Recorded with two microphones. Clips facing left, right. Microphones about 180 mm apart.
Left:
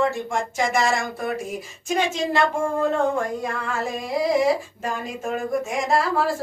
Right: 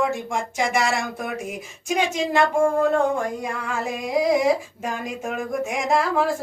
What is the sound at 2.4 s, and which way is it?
Speech, centre (ahead or behind).